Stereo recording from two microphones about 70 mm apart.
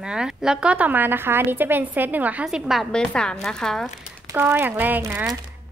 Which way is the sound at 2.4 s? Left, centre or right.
Centre.